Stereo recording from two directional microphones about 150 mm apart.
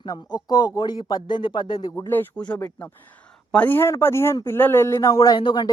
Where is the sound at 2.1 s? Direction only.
10° left (ahead or behind); by 5.7 s 30° left (ahead or behind).